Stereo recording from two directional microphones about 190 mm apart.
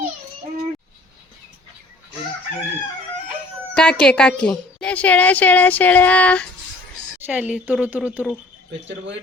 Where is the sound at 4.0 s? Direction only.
5° left (ahead or behind).